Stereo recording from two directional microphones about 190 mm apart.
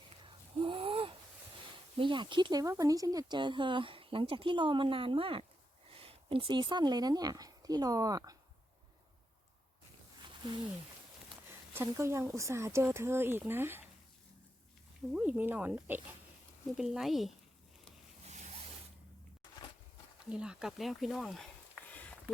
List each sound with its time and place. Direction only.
0.3 s wheeze: 25° right (ahead or behind)
2.0 s speech: 25° right (ahead or behind)
11.7 s speech: 15° right (ahead or behind)
15.1 s speech: 10° right (ahead or behind)
20.3 s speech: 5° right (ahead or behind)